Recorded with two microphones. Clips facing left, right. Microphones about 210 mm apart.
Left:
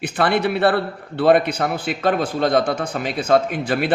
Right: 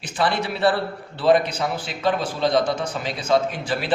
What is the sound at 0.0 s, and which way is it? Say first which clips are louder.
A man's voice: left 5 dB; 60° left (ahead or behind).